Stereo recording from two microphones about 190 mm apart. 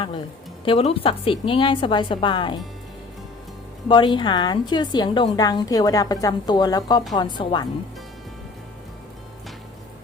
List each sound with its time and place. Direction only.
0.6 s a woman's voice: 30° left (ahead or behind)
3.8 s a woman's voice: 25° left (ahead or behind)